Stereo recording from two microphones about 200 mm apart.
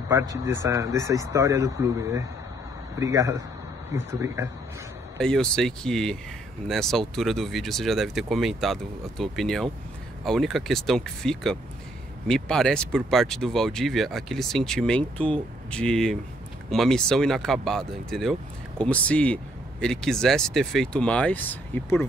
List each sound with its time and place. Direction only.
0.1 s speech: 15° right (ahead or behind)
5.2 s speech: 5° left (ahead or behind)